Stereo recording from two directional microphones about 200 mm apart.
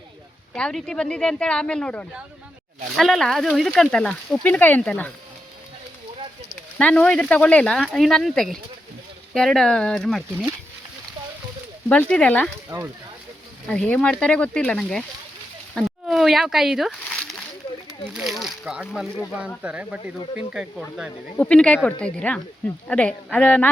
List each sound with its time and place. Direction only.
0.5 s speech: 5° left (ahead or behind)
6.7 s speech: 5° left (ahead or behind)
11.9 s speech: 5° left (ahead or behind)
12.7 s speech: 15° right (ahead or behind)
13.7 s speech: 5° left (ahead or behind)
15.7 s a sound: centre (ahead or behind)
18.0 s speech: centre (ahead or behind)